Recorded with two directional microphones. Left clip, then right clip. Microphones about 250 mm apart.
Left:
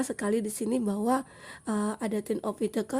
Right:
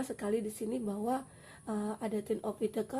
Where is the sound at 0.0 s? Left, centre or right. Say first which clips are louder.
Left 5 dB; left.